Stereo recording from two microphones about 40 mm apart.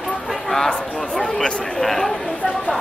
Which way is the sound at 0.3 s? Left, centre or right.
Centre.